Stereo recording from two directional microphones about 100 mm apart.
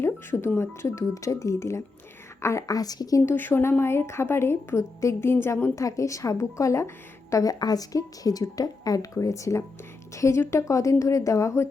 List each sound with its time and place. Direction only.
0.0 s a woman's voice: 25° left (ahead or behind)
3.3 s a woman's voice: 20° left (ahead or behind)